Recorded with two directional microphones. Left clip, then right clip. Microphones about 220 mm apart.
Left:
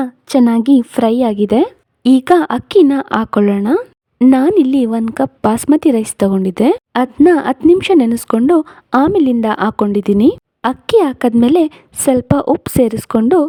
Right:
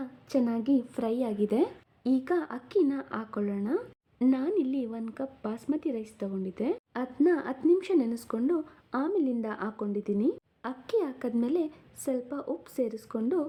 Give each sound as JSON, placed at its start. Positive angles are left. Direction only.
{"t": 0.0, "sound": "a woman's voice", "side_deg": 50}